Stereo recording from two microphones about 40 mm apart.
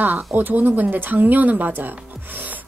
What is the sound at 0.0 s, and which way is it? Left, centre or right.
A woman's voice, right.